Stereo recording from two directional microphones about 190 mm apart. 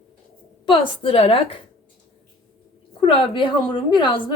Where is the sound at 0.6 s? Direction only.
25° left (ahead or behind).